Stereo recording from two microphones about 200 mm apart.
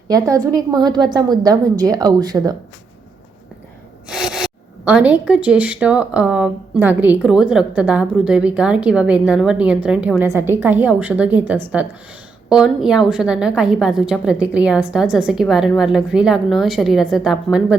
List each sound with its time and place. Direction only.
0.1 s a woman's voice: 15° right (ahead or behind)
4.1 s rub: centre (ahead or behind)
4.9 s speech: 5° right (ahead or behind)